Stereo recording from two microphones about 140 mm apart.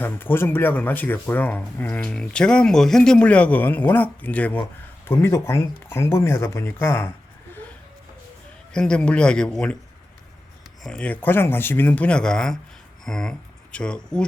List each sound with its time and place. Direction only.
0.0 s speech: 15° left (ahead or behind)
8.7 s speech: 5° left (ahead or behind)
10.8 s speech: 10° left (ahead or behind)
13.1 s a sound: 5° left (ahead or behind)
13.7 s speech: 5° left (ahead or behind)